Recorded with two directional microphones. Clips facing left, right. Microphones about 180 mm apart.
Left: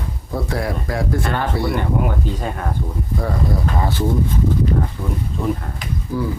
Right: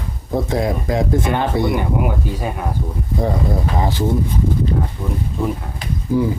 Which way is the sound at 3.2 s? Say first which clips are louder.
Right 3 dB; 20° right (ahead or behind).